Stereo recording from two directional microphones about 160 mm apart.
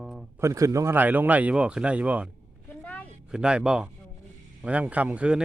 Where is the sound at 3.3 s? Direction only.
5° right (ahead or behind).